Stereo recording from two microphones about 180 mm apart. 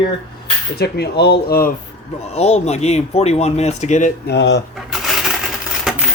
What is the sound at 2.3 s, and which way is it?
Speech, 40° left (ahead or behind).